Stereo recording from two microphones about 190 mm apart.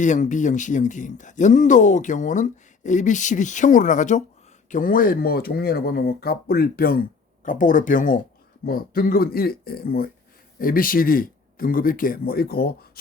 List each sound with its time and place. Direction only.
0.0 s speech: 40° left (ahead or behind)